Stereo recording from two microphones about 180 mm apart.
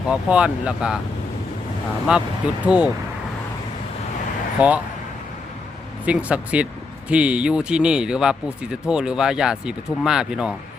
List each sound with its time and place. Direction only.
0.1 s speech: 5° right (ahead or behind)
2.1 s speech: 5° right (ahead or behind)
4.6 s speech: 10° right (ahead or behind)
6.1 s speech: 5° right (ahead or behind)